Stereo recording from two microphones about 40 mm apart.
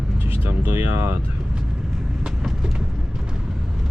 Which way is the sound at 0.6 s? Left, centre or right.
Right.